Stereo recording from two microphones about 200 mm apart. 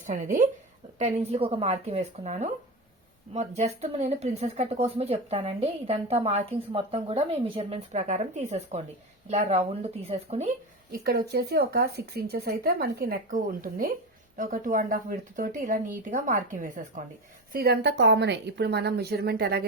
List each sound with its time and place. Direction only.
0.0 s a woman's voice: 40° right (ahead or behind)
10.9 s a woman's voice: 50° right (ahead or behind)